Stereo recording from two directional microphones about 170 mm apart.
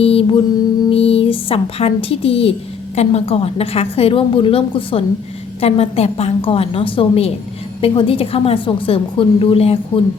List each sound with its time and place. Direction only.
0.0 s a woman's voice: 35° left (ahead or behind)